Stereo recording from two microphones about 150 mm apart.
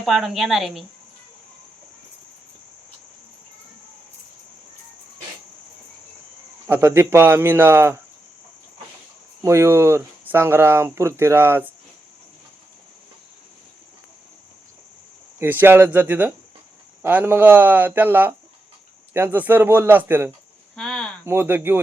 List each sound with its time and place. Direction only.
0.0 s speech: centre (ahead or behind)
6.7 s speech: 15° right (ahead or behind)
9.4 s speech: 20° right (ahead or behind)
15.4 s speech: 15° right (ahead or behind)
20.7 s cricket: centre (ahead or behind)
21.2 s speech: 15° right (ahead or behind)